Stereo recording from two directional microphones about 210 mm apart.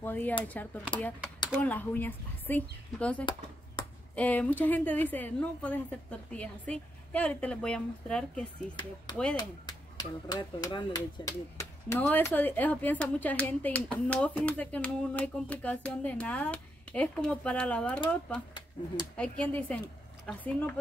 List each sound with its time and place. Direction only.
0.0 s speech: 10° left (ahead or behind)
1.6 s speech: 10° left (ahead or behind)
3.8 s a sound: 20° left (ahead or behind)
4.1 s speech: 5° left (ahead or behind)
9.4 s speech: 20° left (ahead or behind)
19.1 s speech: 5° left (ahead or behind)